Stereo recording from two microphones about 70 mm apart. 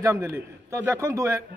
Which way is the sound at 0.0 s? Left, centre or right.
Right.